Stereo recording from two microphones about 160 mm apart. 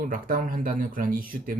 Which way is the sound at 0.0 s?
60° right (ahead or behind).